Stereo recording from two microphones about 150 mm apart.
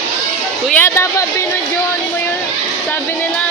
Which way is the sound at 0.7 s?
20° left (ahead or behind).